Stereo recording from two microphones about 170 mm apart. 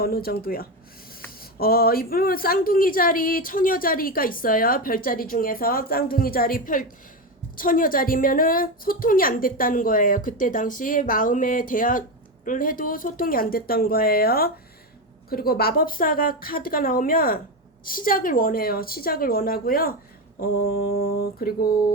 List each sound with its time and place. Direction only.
0.0 s a woman's voice: 65° left (ahead or behind)